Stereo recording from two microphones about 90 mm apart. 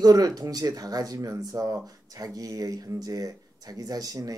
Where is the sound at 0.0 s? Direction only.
45° right (ahead or behind).